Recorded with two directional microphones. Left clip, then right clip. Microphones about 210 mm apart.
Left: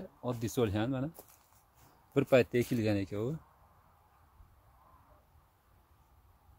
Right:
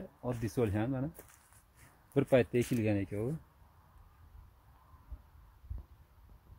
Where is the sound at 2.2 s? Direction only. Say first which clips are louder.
Left 1 dB; 15° left (ahead or behind).